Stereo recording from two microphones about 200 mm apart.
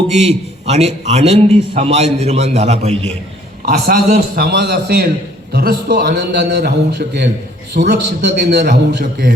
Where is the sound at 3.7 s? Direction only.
45° right (ahead or behind).